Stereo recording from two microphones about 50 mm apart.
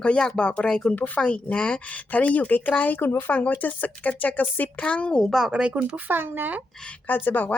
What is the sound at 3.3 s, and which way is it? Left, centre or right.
Speech, left.